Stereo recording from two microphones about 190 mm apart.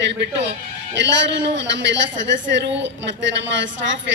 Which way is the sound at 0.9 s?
70° right (ahead or behind).